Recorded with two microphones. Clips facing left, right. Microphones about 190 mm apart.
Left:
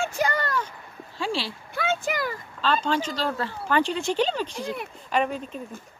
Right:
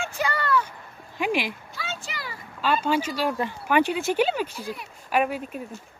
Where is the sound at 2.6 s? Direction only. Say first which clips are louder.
Right 1 dB; 10° right (ahead or behind).